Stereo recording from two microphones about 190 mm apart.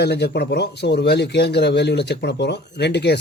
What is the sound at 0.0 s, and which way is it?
Speech, 60° left (ahead or behind).